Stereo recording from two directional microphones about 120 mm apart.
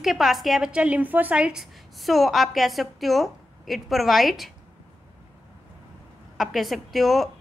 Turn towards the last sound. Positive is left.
turn(degrees=0)  # may be behind; listen again after turning